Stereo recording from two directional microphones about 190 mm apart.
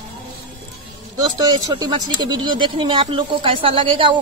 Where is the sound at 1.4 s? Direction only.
20° right (ahead or behind).